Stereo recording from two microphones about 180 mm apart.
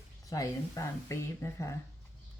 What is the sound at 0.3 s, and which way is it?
Speech, 20° left (ahead or behind).